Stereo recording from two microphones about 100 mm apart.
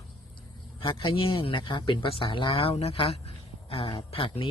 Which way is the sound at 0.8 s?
60° left (ahead or behind).